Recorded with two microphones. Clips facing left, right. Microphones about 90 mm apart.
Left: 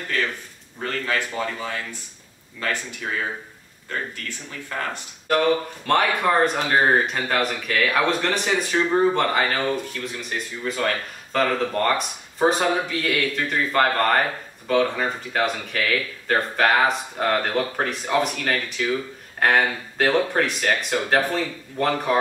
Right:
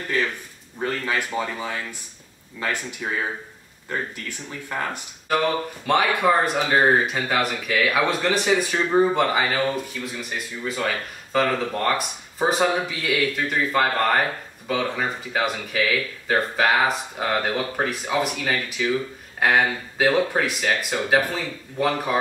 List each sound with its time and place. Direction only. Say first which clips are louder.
0.7 s a man's voice: right 1 dB; 15° right (ahead or behind)
4.5 s a man's voice: right 1 dB; 15° right (ahead or behind)
5.9 s speech: right 1 dB; 5° right (ahead or behind)